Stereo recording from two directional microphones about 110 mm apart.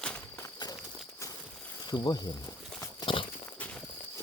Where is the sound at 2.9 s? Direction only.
50° left (ahead or behind).